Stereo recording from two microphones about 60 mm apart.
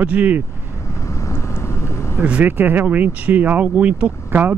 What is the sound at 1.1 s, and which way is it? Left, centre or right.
Vehicle, left.